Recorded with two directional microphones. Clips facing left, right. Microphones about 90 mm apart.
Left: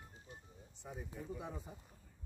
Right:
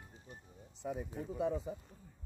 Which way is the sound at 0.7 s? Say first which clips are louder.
Right 10 dB; 90° right.